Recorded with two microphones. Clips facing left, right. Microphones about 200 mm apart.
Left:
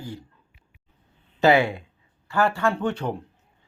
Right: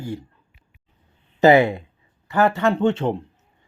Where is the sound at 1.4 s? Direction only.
20° right (ahead or behind).